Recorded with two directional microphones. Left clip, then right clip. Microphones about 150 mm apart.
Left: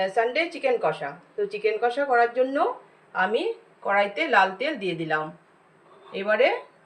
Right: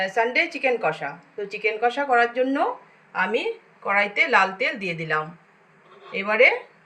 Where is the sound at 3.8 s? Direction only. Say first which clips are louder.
Right 2 dB; 5° right (ahead or behind).